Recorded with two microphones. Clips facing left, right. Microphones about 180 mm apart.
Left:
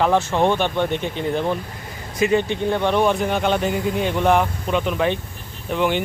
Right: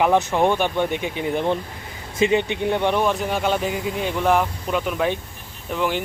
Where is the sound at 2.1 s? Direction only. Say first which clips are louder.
Even; 20° right (ahead or behind).